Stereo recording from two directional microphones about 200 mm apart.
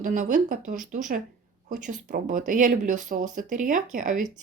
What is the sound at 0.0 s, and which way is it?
Speech, 40° right (ahead or behind).